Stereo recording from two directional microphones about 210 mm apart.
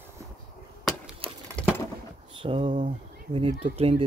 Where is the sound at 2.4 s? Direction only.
25° right (ahead or behind).